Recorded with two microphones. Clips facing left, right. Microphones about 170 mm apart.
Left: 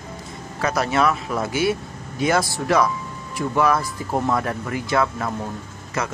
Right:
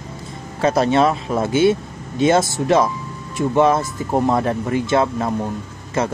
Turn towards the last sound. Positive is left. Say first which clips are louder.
# right 5 dB
turn(degrees=-30)  # may be behind; listen again after turning